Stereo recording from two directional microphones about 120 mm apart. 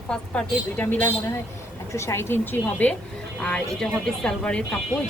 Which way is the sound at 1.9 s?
25° left (ahead or behind).